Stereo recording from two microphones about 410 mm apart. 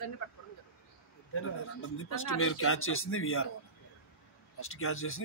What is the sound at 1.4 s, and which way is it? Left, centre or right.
Speech, left.